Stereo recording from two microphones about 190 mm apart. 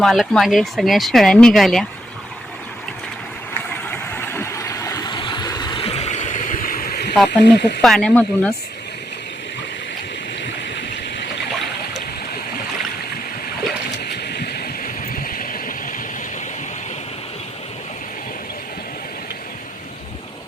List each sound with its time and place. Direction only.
0.0 s speech: centre (ahead or behind)
3.9 s vehicle: 10° left (ahead or behind); by 7.1 s 50° left (ahead or behind)
7.3 s speech: 60° left (ahead or behind)
7.8 s speech: 5° left (ahead or behind)
14.0 s a sound: 60° left (ahead or behind)